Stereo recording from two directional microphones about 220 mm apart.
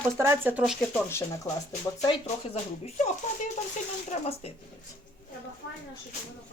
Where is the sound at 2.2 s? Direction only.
30° left (ahead or behind).